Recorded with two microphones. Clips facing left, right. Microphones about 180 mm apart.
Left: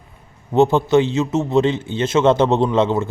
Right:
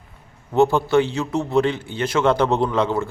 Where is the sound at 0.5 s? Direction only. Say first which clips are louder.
Left 2 dB; 20° left (ahead or behind).